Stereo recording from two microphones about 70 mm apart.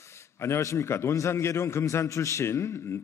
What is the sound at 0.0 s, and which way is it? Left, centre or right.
A man's voice, left.